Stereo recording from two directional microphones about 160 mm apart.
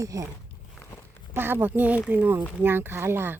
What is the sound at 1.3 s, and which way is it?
Speech, 15° right (ahead or behind).